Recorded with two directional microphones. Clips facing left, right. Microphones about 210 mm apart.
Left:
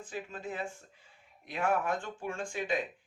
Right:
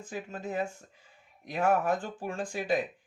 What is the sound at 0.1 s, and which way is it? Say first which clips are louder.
A man's voice: right 4 dB; 40° right (ahead or behind).